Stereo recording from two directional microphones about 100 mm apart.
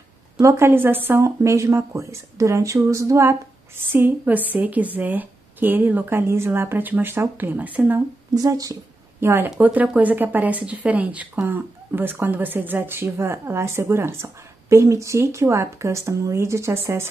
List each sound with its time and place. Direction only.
0.4 s speech: 30° right (ahead or behind)
8.4 s speech: 35° right (ahead or behind)
9.2 s speech: 25° right (ahead or behind)